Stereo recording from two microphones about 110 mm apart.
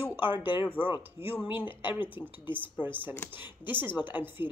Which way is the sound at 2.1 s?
15° right (ahead or behind).